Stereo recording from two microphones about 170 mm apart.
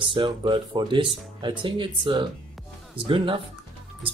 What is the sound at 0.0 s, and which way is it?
Speech, 30° right (ahead or behind).